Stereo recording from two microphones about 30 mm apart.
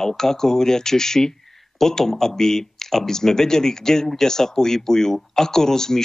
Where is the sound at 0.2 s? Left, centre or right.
Centre.